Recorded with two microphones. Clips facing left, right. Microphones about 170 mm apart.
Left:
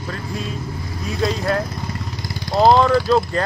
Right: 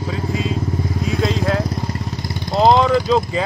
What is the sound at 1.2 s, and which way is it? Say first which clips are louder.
Vehicle: even; centre (ahead or behind).